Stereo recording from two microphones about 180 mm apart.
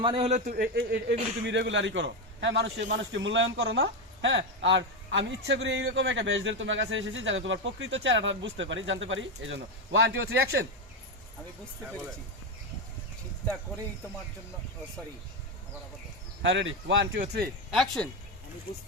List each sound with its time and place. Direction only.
0.0 s a man's voice: 30° right (ahead or behind); by 1.1 s 65° right (ahead or behind)
1.5 s a man's voice: 90° right
16.4 s a man's voice: 90° right
17.7 s speech: centre (ahead or behind)